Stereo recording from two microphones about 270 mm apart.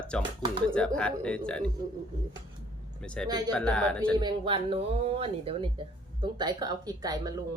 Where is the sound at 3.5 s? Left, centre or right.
Centre.